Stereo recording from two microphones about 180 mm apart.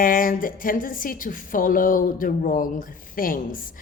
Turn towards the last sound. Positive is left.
turn(degrees=50)  # may be behind; listen again after turning